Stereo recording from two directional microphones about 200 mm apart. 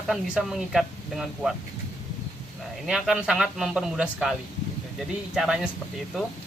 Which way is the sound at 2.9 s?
Centre (ahead or behind).